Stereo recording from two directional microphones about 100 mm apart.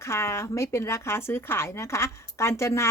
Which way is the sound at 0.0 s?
25° left (ahead or behind).